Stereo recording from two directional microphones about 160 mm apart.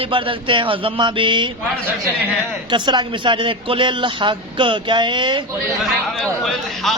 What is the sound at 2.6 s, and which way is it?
A woman's voice, 30° right (ahead or behind).